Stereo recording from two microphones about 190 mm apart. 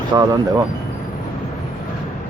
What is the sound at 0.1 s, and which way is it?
Speech, 20° right (ahead or behind).